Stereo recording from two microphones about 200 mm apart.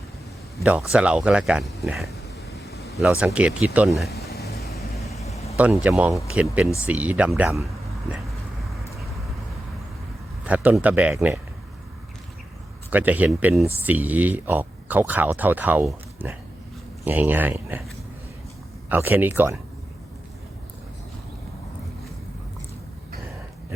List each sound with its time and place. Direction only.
0.6 s speech: 5° right (ahead or behind)
4.9 s vehicle: centre (ahead or behind)
5.5 s speech: 5° right (ahead or behind)
10.4 s speech: 5° right (ahead or behind)
12.9 s speech: 10° right (ahead or behind)
18.9 s speech: 10° right (ahead or behind)